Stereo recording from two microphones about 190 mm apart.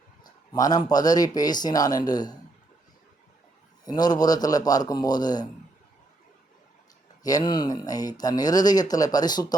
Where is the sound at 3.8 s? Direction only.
20° left (ahead or behind).